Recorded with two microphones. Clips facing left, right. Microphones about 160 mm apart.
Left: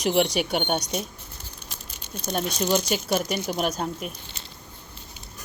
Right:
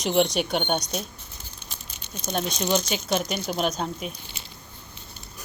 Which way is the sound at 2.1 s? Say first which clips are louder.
Left 1 dB; 10° left (ahead or behind).